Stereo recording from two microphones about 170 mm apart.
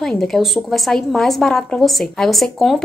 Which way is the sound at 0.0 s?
Centre (ahead or behind).